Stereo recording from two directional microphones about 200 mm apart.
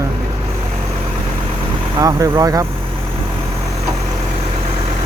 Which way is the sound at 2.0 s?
20° right (ahead or behind).